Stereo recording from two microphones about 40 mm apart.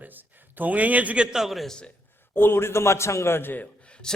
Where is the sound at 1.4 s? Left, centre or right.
Centre.